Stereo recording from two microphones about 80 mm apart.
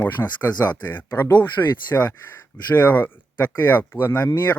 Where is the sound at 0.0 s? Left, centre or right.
Left.